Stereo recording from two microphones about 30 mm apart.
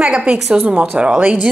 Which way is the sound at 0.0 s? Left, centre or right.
Right.